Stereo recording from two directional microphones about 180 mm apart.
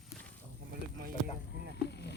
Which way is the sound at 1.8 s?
70° left (ahead or behind).